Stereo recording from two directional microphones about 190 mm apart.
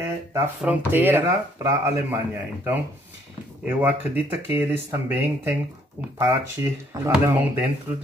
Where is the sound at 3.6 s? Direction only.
10° right (ahead or behind).